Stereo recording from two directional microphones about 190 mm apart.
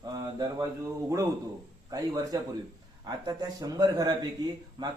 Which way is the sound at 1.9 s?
20° right (ahead or behind).